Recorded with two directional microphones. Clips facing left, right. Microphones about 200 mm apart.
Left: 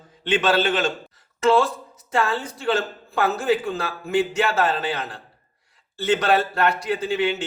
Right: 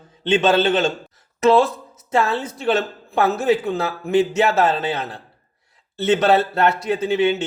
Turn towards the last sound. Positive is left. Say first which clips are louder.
# right 5 dB
turn(degrees=-25)  # may be behind; listen again after turning